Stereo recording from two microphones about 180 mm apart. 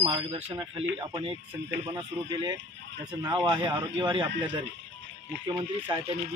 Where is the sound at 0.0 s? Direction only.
30° right (ahead or behind).